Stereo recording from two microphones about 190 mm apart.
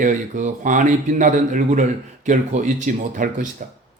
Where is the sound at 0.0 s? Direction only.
40° right (ahead or behind).